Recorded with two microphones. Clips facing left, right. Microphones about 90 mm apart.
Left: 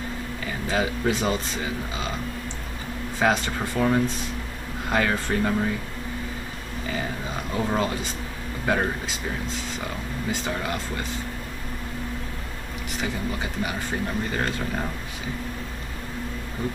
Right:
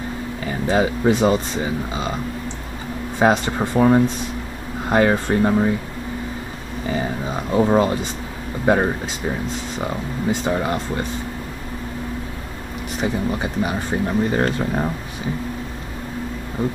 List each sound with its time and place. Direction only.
0.7 s speech: 30° right (ahead or behind)
3.2 s speech: 25° right (ahead or behind)
6.9 s speech: 30° right (ahead or behind)
10.4 s speech: 30° right (ahead or behind)
13.0 s speech: 30° right (ahead or behind)